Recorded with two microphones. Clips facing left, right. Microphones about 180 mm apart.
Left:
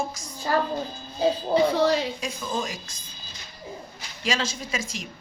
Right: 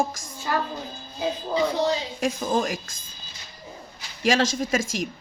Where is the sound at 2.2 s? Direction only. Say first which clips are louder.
Right 6 dB; 50° right (ahead or behind).